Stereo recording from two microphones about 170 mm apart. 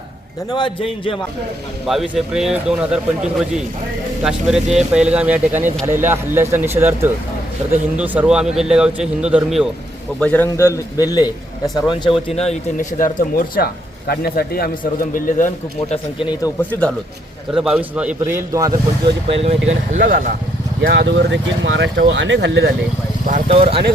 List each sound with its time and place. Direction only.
0.5 s a man's voice: 30° left (ahead or behind)
1.9 s a man's voice: centre (ahead or behind)
10.2 s a man's voice: 10° left (ahead or behind)
12.3 s a man's voice: 40° left (ahead or behind); by 14.7 s 60° left (ahead or behind)
15.1 s speech: 50° left (ahead or behind)
16.4 s speech: 10° left (ahead or behind)
17.5 s a man's voice: 5° right (ahead or behind); by 19.1 s 20° right (ahead or behind)
19.4 s speech: 40° right (ahead or behind)
20.8 s speech: 90° right
23.5 s speech: 35° right (ahead or behind)